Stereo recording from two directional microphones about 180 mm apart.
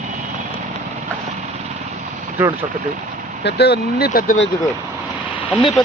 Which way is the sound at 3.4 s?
65° left (ahead or behind).